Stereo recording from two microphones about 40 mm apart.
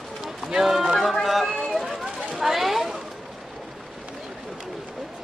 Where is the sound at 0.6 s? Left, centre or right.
Centre.